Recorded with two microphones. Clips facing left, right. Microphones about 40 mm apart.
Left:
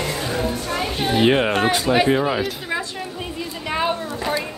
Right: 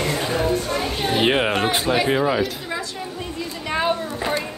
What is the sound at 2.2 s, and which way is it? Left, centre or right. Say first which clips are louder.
Speech: right 1 dB; centre.